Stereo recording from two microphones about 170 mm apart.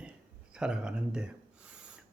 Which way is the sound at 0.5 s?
5° right (ahead or behind).